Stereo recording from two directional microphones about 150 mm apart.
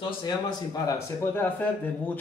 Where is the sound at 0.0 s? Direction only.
30° left (ahead or behind).